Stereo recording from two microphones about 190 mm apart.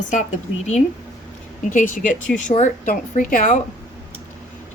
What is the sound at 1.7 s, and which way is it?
A woman's voice, 45° left (ahead or behind).